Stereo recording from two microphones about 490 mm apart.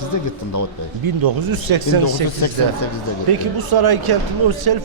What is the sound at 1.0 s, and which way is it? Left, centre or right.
Speech, right.